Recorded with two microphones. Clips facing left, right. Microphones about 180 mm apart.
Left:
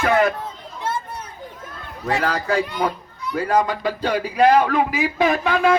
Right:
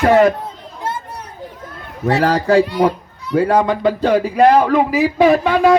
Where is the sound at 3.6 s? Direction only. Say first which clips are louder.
Right 6 dB; 50° right (ahead or behind); by 5.7 s 35° right (ahead or behind).